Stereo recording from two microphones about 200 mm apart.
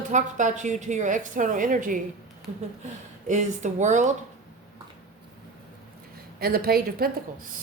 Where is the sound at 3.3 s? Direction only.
35° right (ahead or behind).